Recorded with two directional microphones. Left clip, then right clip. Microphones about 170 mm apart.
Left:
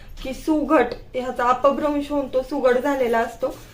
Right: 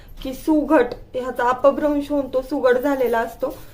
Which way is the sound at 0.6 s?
20° right (ahead or behind).